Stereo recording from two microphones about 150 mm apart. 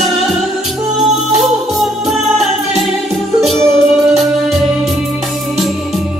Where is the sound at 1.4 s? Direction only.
Centre (ahead or behind).